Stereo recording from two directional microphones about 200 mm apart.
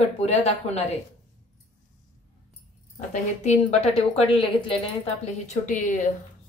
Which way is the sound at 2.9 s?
35° left (ahead or behind).